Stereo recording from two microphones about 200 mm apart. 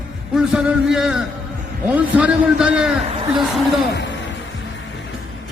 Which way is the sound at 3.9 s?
55° left (ahead or behind).